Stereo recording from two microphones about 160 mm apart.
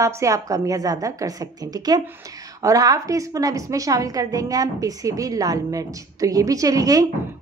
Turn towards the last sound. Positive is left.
turn(degrees=-20)  # may be behind; listen again after turning